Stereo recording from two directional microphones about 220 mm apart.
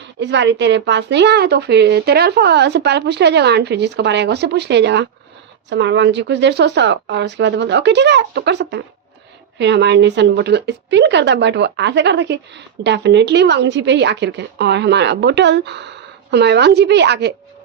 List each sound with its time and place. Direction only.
0.0 s a woman's voice: 55° right (ahead or behind)